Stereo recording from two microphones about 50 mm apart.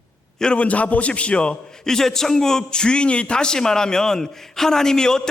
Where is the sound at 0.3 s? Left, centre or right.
Centre.